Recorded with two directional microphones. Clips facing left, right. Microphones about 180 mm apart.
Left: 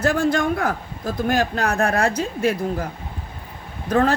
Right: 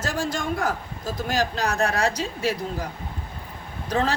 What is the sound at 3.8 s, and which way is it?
Speech, 55° left (ahead or behind).